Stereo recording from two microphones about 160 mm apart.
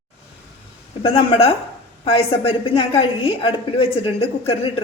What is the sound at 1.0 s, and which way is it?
A woman's voice, 35° left (ahead or behind).